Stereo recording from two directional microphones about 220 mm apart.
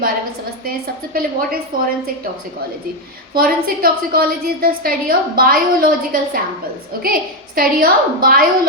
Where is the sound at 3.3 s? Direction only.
40° right (ahead or behind).